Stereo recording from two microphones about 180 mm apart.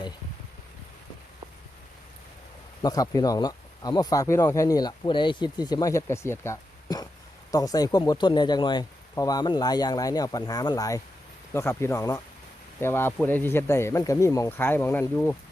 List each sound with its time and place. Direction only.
2.8 s speech: 20° left (ahead or behind)